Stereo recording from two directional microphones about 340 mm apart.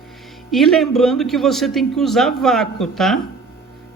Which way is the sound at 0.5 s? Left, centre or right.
Centre.